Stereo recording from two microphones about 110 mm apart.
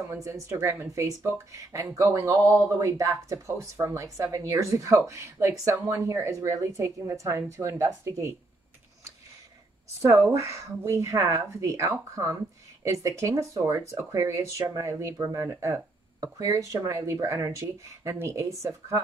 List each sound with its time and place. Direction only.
0.0 s speech: 25° right (ahead or behind)
10.0 s speech: 30° right (ahead or behind)